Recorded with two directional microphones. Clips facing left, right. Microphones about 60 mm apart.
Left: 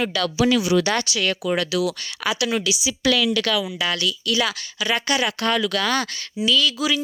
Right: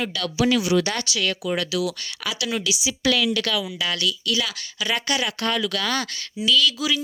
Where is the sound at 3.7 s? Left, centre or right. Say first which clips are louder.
Left 2 dB; left.